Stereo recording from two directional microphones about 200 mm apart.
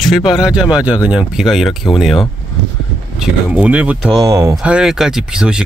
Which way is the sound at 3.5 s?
5° right (ahead or behind).